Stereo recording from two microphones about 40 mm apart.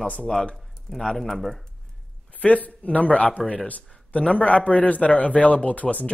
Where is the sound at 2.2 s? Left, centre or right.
Left.